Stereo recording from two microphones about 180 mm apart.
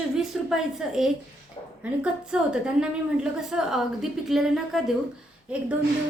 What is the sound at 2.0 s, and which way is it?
A woman's voice, 5° right (ahead or behind).